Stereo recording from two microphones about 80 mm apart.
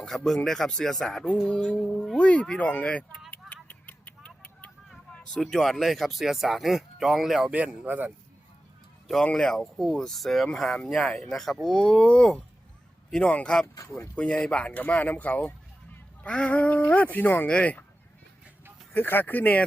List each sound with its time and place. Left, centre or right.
0.0 s speech: centre
3.8 s vehicle: centre
5.1 s a sound: centre
5.4 s speech: centre
7.5 s speech: centre
9.2 s speech: centre
18.9 s speech: left